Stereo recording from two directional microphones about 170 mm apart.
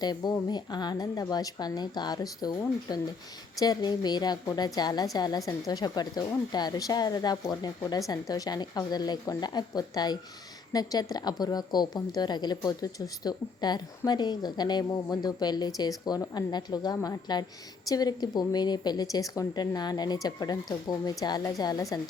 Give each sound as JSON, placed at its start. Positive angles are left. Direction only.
{"t": 0.0, "sound": "a woman's voice", "side_deg": 25}